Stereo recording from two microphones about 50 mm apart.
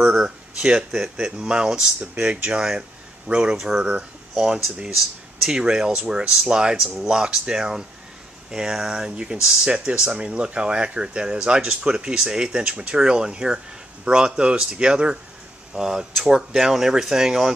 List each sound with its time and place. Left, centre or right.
0.0 s speech: centre